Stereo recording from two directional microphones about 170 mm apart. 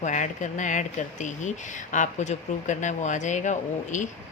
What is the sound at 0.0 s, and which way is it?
Speech, 45° left (ahead or behind).